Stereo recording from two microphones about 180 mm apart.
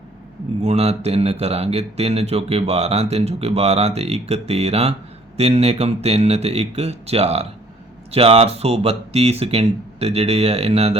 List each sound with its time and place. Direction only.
0.6 s speech: 35° right (ahead or behind)